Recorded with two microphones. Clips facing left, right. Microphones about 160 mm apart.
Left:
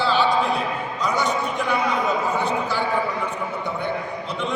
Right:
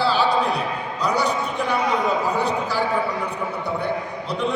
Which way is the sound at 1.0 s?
35° right (ahead or behind).